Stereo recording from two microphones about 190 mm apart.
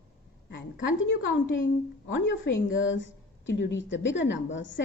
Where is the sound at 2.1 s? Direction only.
75° left (ahead or behind).